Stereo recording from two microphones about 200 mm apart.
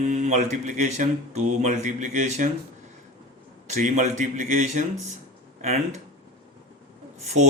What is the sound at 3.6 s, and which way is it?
Speech, 35° right (ahead or behind).